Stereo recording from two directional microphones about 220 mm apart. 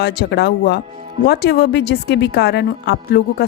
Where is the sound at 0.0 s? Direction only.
50° left (ahead or behind).